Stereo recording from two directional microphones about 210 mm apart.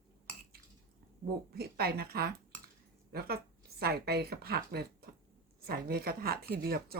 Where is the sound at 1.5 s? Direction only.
50° right (ahead or behind).